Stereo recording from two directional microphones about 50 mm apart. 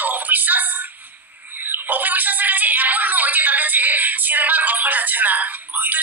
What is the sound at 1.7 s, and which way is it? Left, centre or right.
Speech, right.